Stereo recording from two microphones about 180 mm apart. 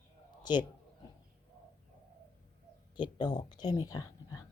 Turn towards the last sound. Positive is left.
turn(degrees=20)  # may be behind; listen again after turning